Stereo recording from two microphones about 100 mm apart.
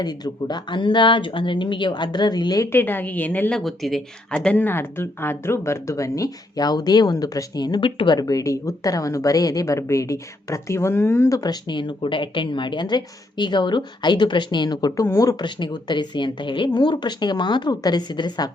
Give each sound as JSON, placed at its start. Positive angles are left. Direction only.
{"t": 0.0, "sound": "a woman's voice", "side_deg": 45}
{"t": 2.7, "sound": "a woman's voice", "side_deg": 20}
{"t": 3.6, "sound": "speech", "side_deg": 0}
{"t": 4.4, "sound": "a woman's voice", "side_deg": 15}
{"t": 7.8, "sound": "a woman's voice", "side_deg": 60}
{"t": 11.3, "sound": "a woman's voice", "side_deg": 45}
{"t": 15.4, "sound": "a woman's voice", "side_deg": 50}